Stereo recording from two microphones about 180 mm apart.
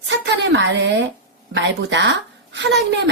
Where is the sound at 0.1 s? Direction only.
85° right.